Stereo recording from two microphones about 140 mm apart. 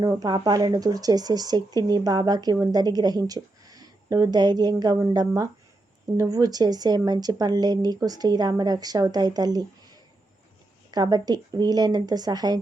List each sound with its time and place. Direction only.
0.0 s speech: 30° right (ahead or behind)